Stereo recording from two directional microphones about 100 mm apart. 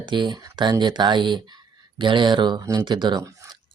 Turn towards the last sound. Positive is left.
turn(degrees=-50)  # may be behind; listen again after turning